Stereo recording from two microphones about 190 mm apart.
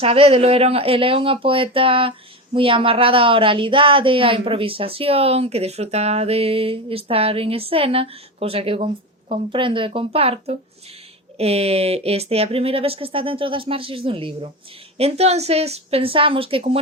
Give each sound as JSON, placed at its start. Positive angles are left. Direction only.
{"t": 0.0, "sound": "speech", "side_deg": -30}